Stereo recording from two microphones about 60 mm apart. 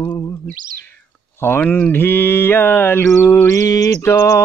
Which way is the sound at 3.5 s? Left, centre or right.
Left.